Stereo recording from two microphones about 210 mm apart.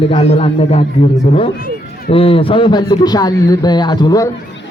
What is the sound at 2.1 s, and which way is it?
A man's voice, 25° left (ahead or behind).